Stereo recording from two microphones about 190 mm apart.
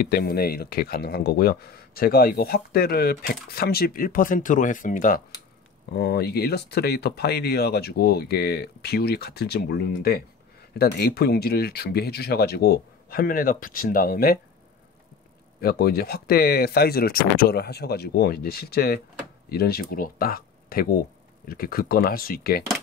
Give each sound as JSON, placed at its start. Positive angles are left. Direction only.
{"t": 0.0, "sound": "speech", "side_deg": 55}
{"t": 5.9, "sound": "speech", "side_deg": 60}
{"t": 15.6, "sound": "speech", "side_deg": 55}